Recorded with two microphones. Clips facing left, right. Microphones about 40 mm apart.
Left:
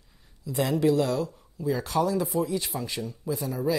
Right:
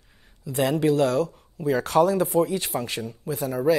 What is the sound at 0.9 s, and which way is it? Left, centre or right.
Speech, right.